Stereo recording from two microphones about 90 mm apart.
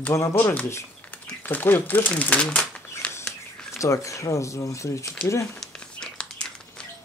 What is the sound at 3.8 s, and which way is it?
Speech, 35° left (ahead or behind).